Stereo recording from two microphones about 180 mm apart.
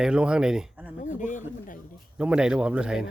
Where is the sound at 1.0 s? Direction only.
45° left (ahead or behind).